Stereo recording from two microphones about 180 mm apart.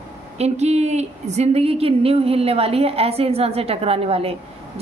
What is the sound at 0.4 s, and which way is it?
Speech, 40° right (ahead or behind).